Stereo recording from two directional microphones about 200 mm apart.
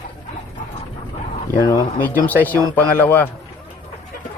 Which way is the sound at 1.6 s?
15° left (ahead or behind).